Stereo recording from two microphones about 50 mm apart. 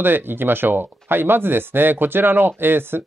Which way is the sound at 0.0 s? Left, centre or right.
Right.